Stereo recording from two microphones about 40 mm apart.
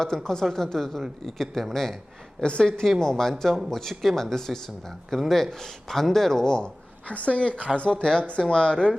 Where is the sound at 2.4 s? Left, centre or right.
Left.